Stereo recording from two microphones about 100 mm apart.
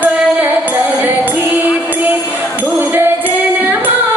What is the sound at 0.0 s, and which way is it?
Music, 20° right (ahead or behind).